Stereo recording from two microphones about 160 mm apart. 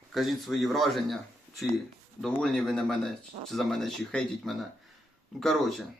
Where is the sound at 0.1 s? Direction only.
Centre (ahead or behind).